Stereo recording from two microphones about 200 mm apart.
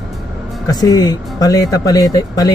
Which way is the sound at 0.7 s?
20° left (ahead or behind).